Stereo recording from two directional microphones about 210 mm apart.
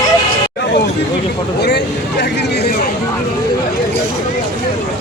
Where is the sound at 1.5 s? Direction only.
55° left (ahead or behind).